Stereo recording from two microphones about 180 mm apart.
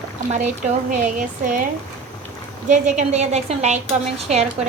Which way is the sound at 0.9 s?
45° right (ahead or behind).